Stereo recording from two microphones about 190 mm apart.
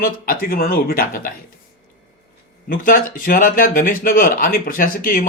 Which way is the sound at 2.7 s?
45° left (ahead or behind).